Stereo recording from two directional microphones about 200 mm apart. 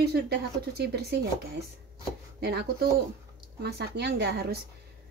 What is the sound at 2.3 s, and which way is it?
A woman's voice, 50° right (ahead or behind).